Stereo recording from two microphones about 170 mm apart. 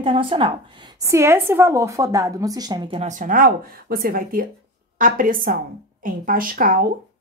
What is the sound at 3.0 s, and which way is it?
A woman's voice, 50° right (ahead or behind).